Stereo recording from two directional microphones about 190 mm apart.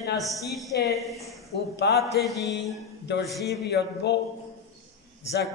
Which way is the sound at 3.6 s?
60° left (ahead or behind).